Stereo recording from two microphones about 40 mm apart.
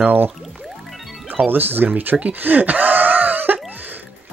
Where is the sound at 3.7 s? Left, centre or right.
Right.